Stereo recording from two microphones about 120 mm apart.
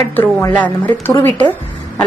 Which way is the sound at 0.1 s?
15° left (ahead or behind).